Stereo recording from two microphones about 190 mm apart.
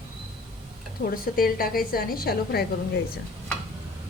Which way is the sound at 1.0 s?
50° left (ahead or behind).